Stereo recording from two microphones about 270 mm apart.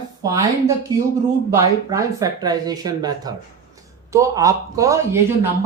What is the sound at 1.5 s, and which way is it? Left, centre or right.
Speech, centre.